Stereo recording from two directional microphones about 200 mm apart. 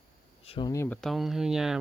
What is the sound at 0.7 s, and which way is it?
Speech, 10° left (ahead or behind).